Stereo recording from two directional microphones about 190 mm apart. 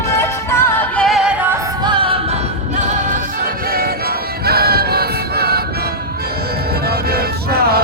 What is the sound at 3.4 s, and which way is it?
Music, 50° right (ahead or behind).